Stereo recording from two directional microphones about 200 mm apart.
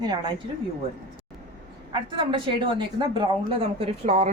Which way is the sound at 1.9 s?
25° right (ahead or behind).